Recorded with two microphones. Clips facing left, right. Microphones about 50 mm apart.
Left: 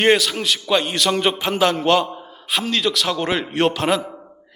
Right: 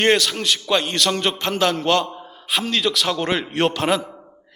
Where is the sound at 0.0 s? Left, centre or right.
Centre.